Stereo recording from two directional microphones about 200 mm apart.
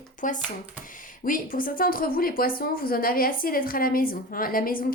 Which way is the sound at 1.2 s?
45° left (ahead or behind).